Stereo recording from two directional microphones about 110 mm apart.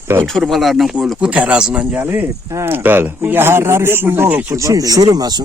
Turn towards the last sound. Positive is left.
turn(degrees=-35)  # may be behind; listen again after turning